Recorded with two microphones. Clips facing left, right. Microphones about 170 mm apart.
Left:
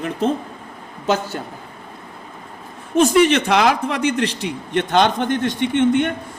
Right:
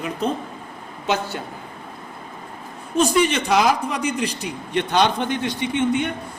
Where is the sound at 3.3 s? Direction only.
65° left (ahead or behind).